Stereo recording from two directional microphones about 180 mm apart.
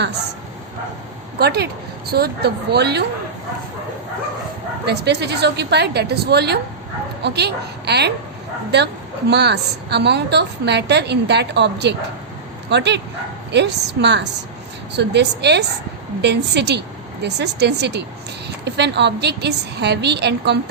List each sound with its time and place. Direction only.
1.4 s a woman's voice: 60° right (ahead or behind)
4.9 s a woman's voice: 65° right (ahead or behind)
9.3 s a woman's voice: 70° right (ahead or behind)